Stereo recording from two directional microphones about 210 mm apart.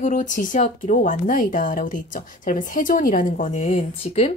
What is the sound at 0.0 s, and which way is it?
A woman's voice, 35° left (ahead or behind).